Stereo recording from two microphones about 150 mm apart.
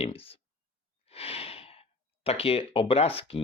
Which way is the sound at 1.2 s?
40° left (ahead or behind).